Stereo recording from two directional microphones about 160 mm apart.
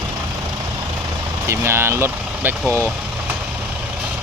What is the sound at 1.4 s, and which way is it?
Speech, 15° right (ahead or behind).